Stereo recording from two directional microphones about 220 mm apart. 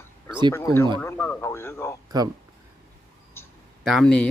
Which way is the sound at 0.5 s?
10° left (ahead or behind).